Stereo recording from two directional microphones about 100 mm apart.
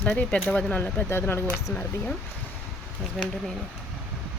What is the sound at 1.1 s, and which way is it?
Speech, 25° left (ahead or behind).